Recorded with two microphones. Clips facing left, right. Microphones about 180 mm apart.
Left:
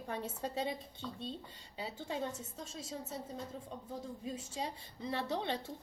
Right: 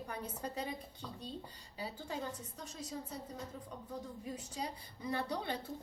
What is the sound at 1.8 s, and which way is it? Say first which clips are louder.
A woman's voice: left 2 dB; 25° left (ahead or behind).